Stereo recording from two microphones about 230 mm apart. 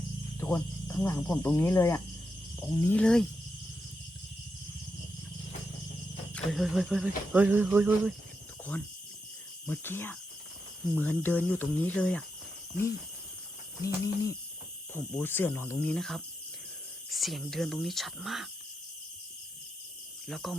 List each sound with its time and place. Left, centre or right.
0.3 s speech: centre
6.3 s speech: centre
7.3 s a sound: centre
9.6 s speech: centre
13.8 s speech: centre
20.2 s speech: centre